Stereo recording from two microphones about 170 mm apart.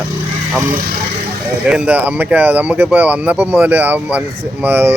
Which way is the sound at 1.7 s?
5° right (ahead or behind).